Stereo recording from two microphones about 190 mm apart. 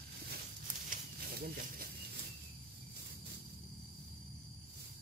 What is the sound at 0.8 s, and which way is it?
Snake, 50° right (ahead or behind).